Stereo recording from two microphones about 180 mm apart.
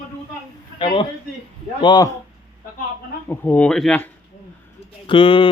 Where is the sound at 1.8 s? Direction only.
20° left (ahead or behind).